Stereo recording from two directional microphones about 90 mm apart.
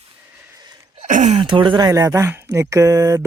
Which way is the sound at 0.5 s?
45° right (ahead or behind).